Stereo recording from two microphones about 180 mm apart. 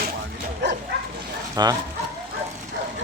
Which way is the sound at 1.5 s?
20° right (ahead or behind).